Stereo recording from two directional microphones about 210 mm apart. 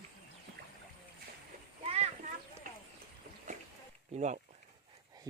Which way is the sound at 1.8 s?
30° right (ahead or behind).